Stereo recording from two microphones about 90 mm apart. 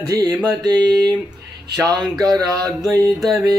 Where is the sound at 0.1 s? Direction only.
45° right (ahead or behind).